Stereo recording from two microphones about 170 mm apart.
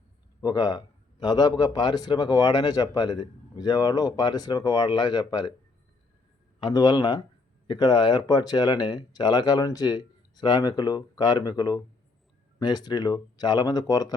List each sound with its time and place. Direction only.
0.4 s a man's voice: 20° left (ahead or behind)
6.6 s a man's voice: 25° left (ahead or behind)